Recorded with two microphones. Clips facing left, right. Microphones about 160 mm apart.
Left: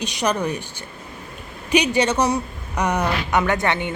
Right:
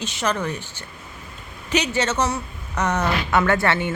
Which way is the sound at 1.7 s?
15° left (ahead or behind).